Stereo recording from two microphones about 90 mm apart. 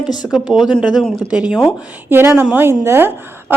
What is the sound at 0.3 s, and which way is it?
Speech, 5° right (ahead or behind).